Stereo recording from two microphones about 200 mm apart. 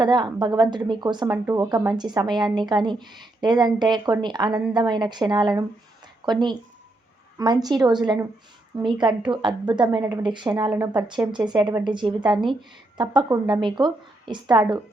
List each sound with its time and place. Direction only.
0.0 s a woman's voice: 20° right (ahead or behind)